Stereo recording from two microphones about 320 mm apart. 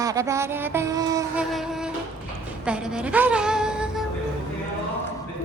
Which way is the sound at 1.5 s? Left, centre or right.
Centre.